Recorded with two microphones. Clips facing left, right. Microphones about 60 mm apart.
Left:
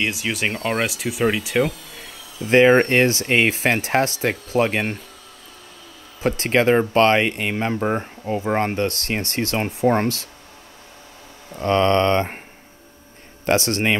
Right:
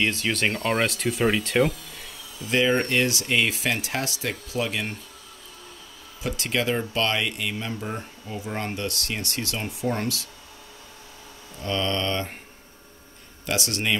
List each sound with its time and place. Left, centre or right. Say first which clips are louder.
0.0 s speech: left 1 dB; centre
2.4 s speech: left 9 dB; left
6.2 s speech: left 8 dB; left
11.5 s speech: left 10 dB; left
13.5 s speech: left 7 dB; left